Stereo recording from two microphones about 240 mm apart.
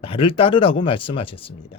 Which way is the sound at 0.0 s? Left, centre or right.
Left.